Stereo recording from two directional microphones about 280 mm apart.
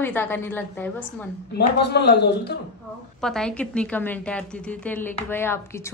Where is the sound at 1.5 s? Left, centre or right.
Left.